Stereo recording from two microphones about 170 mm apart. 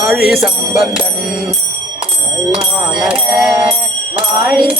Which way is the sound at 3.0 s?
Centre (ahead or behind).